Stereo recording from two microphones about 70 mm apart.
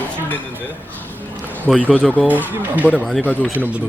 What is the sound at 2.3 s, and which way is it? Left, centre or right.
Speech, right.